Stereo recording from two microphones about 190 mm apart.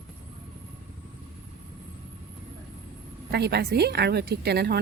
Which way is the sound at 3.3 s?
60° right (ahead or behind).